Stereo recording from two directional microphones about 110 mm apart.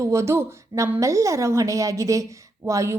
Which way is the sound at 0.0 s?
25° right (ahead or behind).